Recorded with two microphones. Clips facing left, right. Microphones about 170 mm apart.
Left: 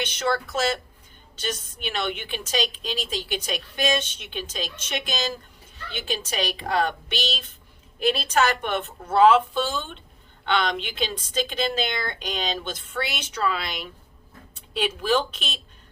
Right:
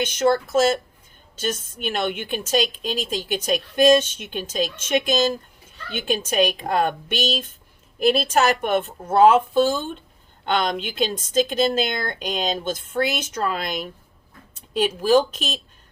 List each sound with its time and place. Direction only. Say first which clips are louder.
0.0 s a woman's voice: right 6 dB; 50° right (ahead or behind)